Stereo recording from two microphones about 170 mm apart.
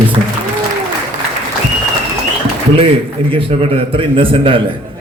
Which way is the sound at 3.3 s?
30° right (ahead or behind).